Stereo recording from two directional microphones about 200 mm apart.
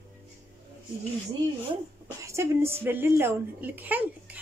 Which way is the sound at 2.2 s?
15° right (ahead or behind).